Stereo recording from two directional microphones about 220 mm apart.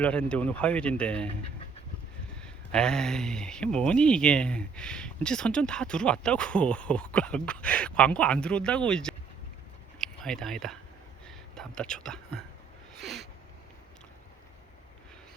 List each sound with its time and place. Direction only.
0.0 s speech: 5° left (ahead or behind)
2.4 s speech: 5° left (ahead or behind)
11.3 s a sound: 5° left (ahead or behind)